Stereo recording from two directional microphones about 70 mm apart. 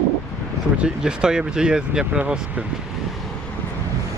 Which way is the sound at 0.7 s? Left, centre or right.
Centre.